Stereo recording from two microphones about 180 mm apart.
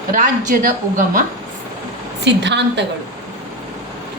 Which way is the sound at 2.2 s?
75° right (ahead or behind).